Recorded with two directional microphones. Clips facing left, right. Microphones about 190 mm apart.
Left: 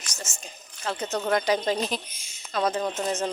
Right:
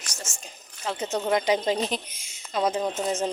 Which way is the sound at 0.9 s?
10° right (ahead or behind).